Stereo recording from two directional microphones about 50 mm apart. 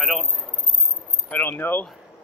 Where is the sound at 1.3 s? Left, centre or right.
Left.